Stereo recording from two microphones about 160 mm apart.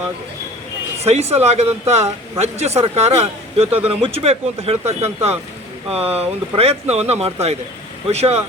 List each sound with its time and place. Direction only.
1.0 s speech: 40° right (ahead or behind)